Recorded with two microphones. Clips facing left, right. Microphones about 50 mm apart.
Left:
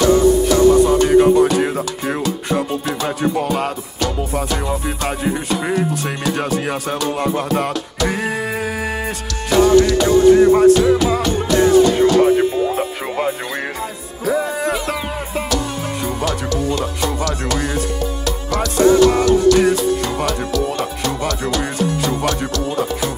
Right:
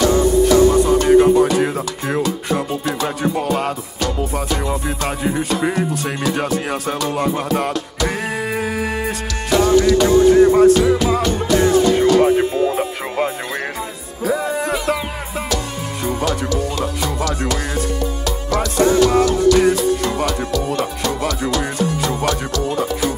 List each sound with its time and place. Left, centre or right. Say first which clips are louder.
0.0 s music: left 1 dB; centre
12.5 s music: right 1 dB; centre
15.5 s speech: left 2 dB; centre
18.5 s music: left 2 dB; centre